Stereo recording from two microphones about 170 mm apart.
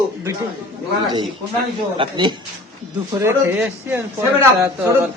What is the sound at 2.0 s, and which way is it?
Speech, 30° right (ahead or behind).